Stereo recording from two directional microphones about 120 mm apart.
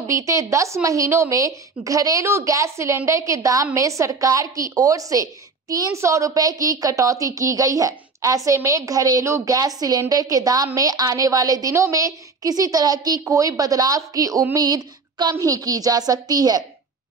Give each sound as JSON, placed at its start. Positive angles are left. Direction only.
{"t": 0.0, "sound": "a woman's voice", "side_deg": -25}
{"t": 14.5, "sound": "a sound", "side_deg": -35}
{"t": 15.3, "sound": "a woman's voice", "side_deg": -30}